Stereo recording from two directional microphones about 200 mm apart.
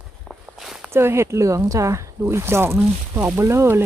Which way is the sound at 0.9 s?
10° right (ahead or behind).